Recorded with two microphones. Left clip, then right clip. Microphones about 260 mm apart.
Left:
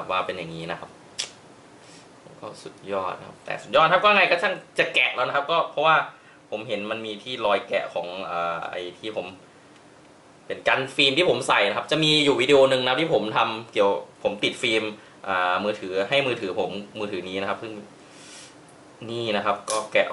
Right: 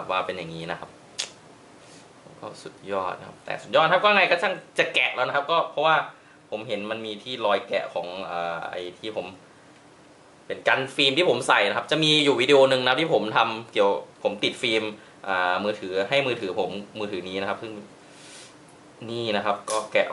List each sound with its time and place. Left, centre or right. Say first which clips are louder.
0.0 s speech: left 1 dB; centre
2.6 s speech: even; centre
7.9 s speech: left 1 dB; right
8.2 s speech: left 2 dB; centre
10.5 s speech: even; centre
16.5 s speech: even; right
16.9 s speech: left 1 dB; centre
18.9 s speech: left 1 dB; right
19.2 s speech: left 1 dB; centre